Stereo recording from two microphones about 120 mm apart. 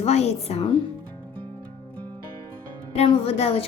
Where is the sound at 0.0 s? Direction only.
60° left (ahead or behind).